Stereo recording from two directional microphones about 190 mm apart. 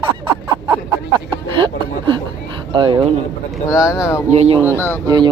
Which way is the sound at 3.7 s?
15° left (ahead or behind).